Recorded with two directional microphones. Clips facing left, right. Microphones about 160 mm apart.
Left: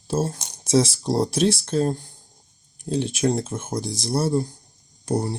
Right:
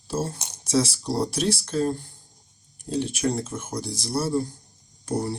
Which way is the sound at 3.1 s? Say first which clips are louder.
Left 3 dB; 30° left (ahead or behind).